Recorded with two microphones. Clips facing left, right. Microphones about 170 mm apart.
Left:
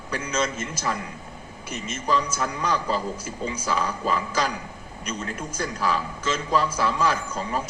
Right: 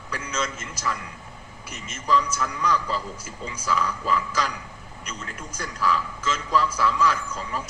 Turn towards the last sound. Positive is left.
turn(degrees=25)  # may be behind; listen again after turning